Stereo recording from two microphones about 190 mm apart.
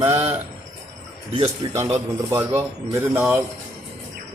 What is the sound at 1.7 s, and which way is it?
A man's voice, 15° right (ahead or behind).